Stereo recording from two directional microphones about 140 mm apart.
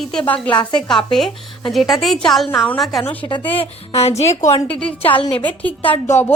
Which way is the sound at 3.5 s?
45° left (ahead or behind).